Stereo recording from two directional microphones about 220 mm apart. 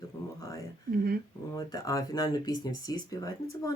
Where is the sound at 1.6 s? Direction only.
15° left (ahead or behind).